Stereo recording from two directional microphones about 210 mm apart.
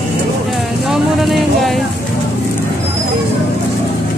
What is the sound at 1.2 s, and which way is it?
Speech, centre (ahead or behind).